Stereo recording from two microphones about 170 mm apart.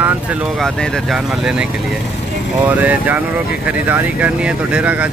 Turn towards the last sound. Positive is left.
turn(degrees=-10)  # may be behind; listen again after turning